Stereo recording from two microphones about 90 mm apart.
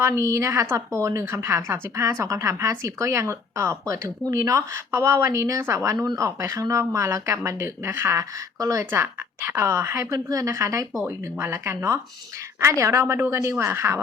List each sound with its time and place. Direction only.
0.0 s a woman's voice: 35° right (ahead or behind)